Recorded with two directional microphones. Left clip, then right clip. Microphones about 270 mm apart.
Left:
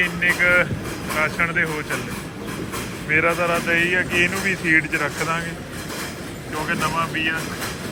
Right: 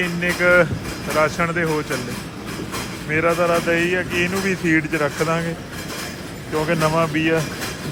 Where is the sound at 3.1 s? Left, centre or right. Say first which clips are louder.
Right 1 dB; centre.